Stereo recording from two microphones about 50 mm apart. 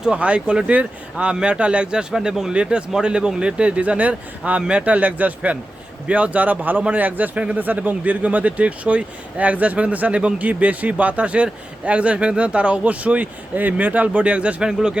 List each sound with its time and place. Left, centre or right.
0.0 s speech: right
14.7 s speech: centre